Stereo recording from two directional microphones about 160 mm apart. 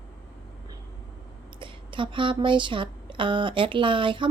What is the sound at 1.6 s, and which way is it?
Speech, 30° right (ahead or behind).